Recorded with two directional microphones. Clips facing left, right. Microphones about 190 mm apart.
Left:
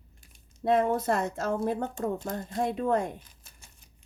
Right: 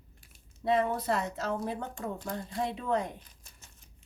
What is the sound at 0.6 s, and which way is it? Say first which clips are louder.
Speech: left 3 dB; 50° left (ahead or behind).